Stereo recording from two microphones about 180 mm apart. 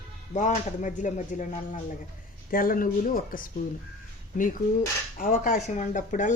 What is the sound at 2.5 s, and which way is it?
Speech, 50° left (ahead or behind).